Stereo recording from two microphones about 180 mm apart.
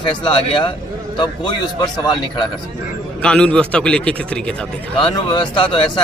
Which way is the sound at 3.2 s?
5° left (ahead or behind).